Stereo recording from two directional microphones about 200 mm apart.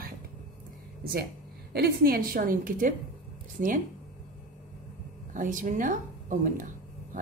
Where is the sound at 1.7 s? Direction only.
50° right (ahead or behind).